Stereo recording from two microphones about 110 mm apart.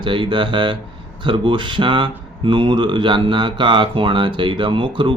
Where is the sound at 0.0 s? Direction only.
45° right (ahead or behind).